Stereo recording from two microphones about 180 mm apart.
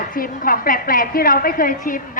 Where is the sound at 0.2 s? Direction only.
50° left (ahead or behind).